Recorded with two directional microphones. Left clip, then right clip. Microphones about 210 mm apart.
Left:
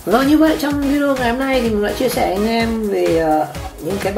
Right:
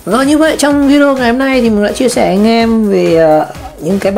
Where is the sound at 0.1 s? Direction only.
30° right (ahead or behind).